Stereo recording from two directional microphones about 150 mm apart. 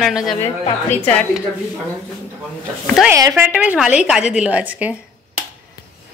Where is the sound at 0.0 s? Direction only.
Centre (ahead or behind).